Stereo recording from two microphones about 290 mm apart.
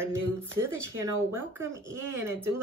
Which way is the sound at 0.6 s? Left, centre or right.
Centre.